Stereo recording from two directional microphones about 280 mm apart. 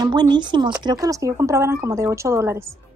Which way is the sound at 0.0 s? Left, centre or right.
Centre.